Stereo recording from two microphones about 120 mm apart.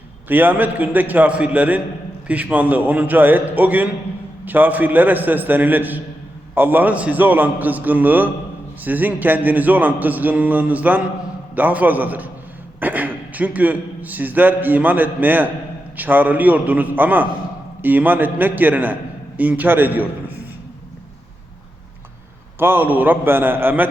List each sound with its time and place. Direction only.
0.3 s a man's voice: 15° right (ahead or behind)
22.5 s a man's voice: 15° right (ahead or behind)